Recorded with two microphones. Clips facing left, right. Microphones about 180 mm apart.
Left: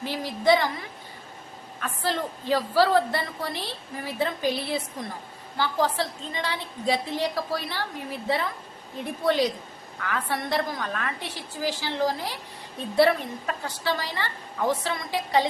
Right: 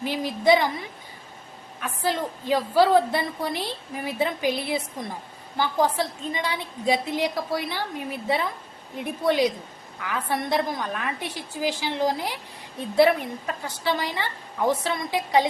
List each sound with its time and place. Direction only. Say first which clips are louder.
0.0 s a woman's voice: right 2 dB; 15° right (ahead or behind)
1.8 s a woman's voice: right 2 dB; 15° right (ahead or behind)
13.7 s a woman's voice: right 4 dB; 15° right (ahead or behind)